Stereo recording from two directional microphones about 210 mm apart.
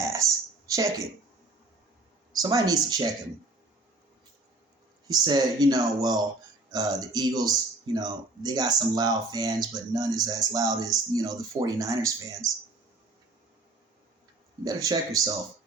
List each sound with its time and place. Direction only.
0.7 s speech: 15° right (ahead or behind)
2.4 s speech: 15° right (ahead or behind)
5.0 s speech: 20° right (ahead or behind)
14.6 s speech: 15° right (ahead or behind)